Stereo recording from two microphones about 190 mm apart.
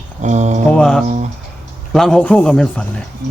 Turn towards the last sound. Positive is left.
turn(degrees=5)  # may be behind; listen again after turning